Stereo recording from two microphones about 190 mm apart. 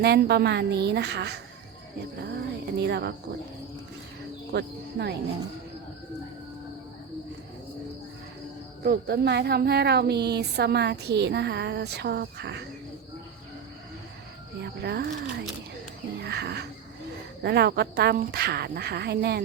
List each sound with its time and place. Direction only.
0.0 s speech: 60° right (ahead or behind)
2.7 s speech: 60° right (ahead or behind)
4.5 s speech: 60° right (ahead or behind)
8.8 s speech: 60° right (ahead or behind)
14.6 s speech: 55° right (ahead or behind)